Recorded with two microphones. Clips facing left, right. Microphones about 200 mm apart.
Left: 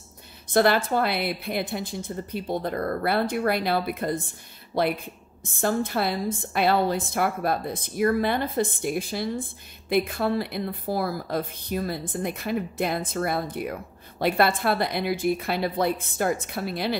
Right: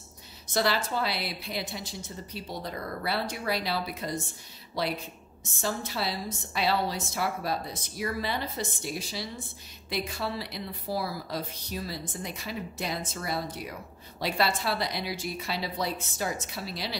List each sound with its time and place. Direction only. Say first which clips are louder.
0.5 s a woman's voice: left 7 dB; 55° left (ahead or behind)